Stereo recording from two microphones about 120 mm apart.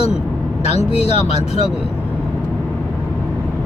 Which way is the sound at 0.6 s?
60° left (ahead or behind).